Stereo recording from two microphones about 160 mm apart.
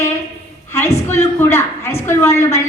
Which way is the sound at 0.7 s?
15° left (ahead or behind).